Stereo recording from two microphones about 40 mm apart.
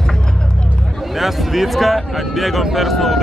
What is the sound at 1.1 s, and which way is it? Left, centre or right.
Speech, centre.